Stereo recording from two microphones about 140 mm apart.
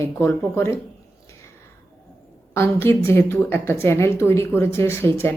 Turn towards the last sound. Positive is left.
turn(degrees=15)  # may be behind; listen again after turning